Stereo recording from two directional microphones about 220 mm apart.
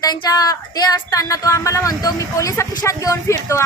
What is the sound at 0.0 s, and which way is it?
A woman's voice, 15° left (ahead or behind).